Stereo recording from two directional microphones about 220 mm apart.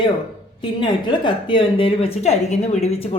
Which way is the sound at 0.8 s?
20° left (ahead or behind).